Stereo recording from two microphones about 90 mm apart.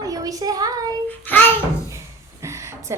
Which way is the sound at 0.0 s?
40° right (ahead or behind).